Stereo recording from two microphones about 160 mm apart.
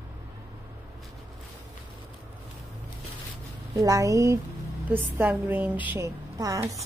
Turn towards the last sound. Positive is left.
turn(degrees=-20)  # may be behind; listen again after turning